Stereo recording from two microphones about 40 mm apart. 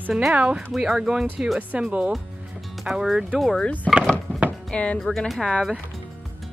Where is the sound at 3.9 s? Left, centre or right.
Centre.